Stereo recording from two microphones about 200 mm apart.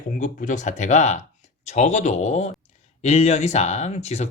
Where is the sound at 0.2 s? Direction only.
40° left (ahead or behind).